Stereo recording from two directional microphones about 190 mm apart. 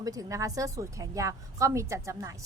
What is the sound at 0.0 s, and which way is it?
A woman's voice, 20° right (ahead or behind).